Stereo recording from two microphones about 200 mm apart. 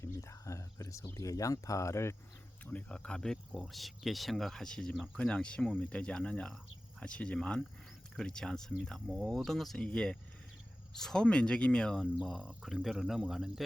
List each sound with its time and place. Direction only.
0.0 s speech: 15° left (ahead or behind); by 13.5 s centre (ahead or behind)